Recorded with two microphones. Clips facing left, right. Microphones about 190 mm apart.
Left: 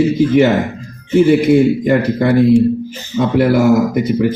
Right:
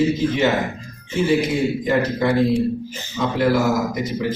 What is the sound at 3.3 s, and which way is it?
Speech, 60° left (ahead or behind).